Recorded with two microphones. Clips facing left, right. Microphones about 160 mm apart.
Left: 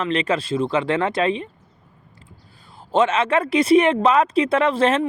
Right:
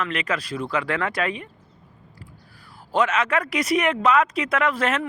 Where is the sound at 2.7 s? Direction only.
25° left (ahead or behind).